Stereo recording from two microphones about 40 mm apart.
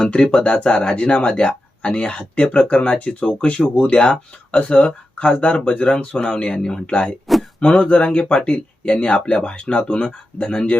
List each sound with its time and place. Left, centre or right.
0.1 s speech: left
7.3 s a sound: centre
7.8 s speech: left